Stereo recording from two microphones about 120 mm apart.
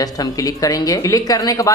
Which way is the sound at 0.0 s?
30° left (ahead or behind).